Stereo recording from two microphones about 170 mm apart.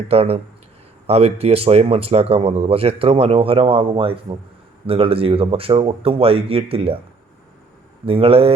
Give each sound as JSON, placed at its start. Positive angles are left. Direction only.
{"t": 0.1, "sound": "speech", "side_deg": -35}
{"t": 8.0, "sound": "speech", "side_deg": -35}